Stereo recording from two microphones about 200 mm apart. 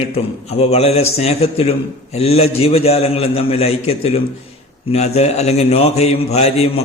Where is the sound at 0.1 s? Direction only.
30° left (ahead or behind).